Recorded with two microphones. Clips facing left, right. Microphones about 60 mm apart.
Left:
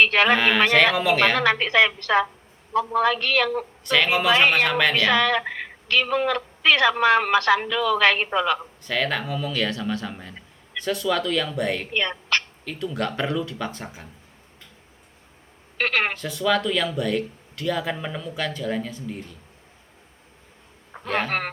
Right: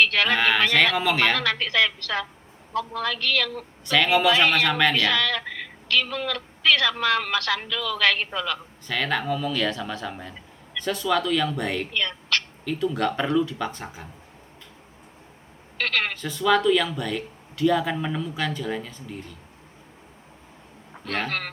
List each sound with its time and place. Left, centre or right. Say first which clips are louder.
0.0 s a woman's voice: left 3 dB; left
0.3 s speech: left 2 dB; centre
1.4 s a woman's voice: left 4 dB; left
3.8 s speech: right 1 dB; centre
4.9 s a woman's voice: left 4 dB; left
8.9 s speech: even; centre
11.9 s speech: left 2 dB; left
12.6 s speech: right 3 dB; centre
15.8 s a woman's voice: left 3 dB; left
16.1 s speech: right 1 dB; centre
21.0 s speech: left 4 dB; centre
21.2 s a woman's voice: left 3 dB; left